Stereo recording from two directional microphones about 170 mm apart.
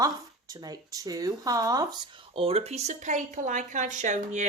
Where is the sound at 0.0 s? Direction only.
20° right (ahead or behind).